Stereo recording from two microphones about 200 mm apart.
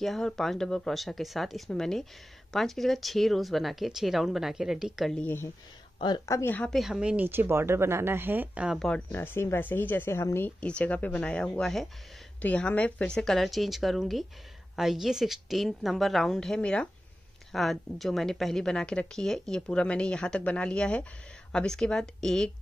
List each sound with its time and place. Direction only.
0.0 s speech: centre (ahead or behind)
5.9 s speech: 20° left (ahead or behind); by 22.5 s centre (ahead or behind)